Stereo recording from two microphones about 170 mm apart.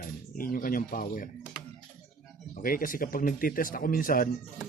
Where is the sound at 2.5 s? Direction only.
55° left (ahead or behind).